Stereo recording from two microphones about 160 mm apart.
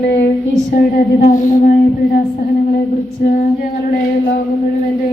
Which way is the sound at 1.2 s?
55° left (ahead or behind).